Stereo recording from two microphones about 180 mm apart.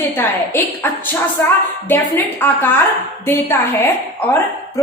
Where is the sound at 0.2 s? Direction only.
15° left (ahead or behind).